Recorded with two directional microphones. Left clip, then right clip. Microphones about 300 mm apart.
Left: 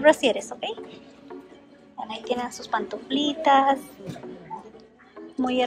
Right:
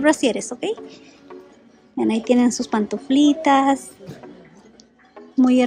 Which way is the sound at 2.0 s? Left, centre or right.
Centre.